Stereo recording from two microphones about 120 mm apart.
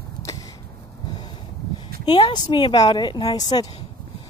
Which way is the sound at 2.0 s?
35° left (ahead or behind).